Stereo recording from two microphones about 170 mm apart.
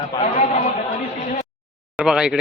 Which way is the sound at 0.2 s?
45° left (ahead or behind).